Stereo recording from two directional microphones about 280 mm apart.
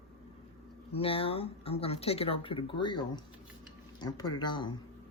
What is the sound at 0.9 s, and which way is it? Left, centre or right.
Speech, left.